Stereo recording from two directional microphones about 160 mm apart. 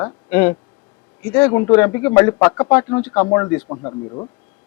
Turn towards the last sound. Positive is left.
turn(degrees=30)  # may be behind; listen again after turning